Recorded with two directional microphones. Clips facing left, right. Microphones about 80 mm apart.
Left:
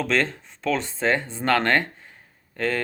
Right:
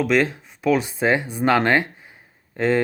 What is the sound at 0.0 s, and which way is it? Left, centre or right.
Speech, centre.